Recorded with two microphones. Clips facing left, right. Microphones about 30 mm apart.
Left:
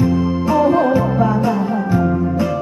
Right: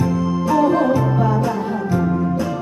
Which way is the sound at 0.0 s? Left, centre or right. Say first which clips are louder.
Left 3 dB; left.